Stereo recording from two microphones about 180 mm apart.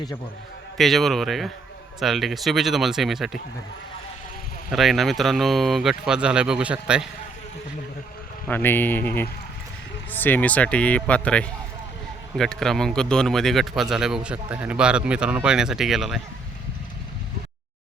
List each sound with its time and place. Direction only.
0.8 s speech: centre (ahead or behind)
4.7 s speech: centre (ahead or behind)
8.4 s speech: 10° left (ahead or behind)